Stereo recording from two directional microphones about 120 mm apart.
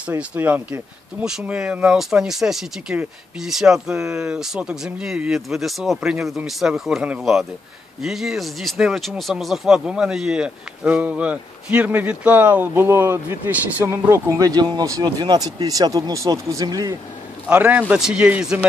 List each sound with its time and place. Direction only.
0.0 s a man's voice: 10° right (ahead or behind)
14.4 s speech: 35° right (ahead or behind)
17.5 s a man's voice: 10° right (ahead or behind)